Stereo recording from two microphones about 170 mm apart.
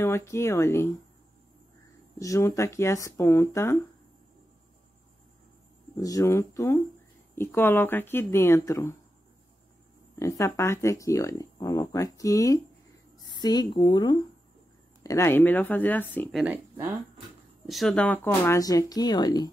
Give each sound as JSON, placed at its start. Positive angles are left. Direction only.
{"t": 0.0, "sound": "speech", "side_deg": 15}
{"t": 2.1, "sound": "speech", "side_deg": 20}
{"t": 5.9, "sound": "speech", "side_deg": 20}
{"t": 10.1, "sound": "speech", "side_deg": 15}
{"t": 15.0, "sound": "speech", "side_deg": 15}
{"t": 16.4, "sound": "speech", "side_deg": -10}
{"t": 17.6, "sound": "speech", "side_deg": 0}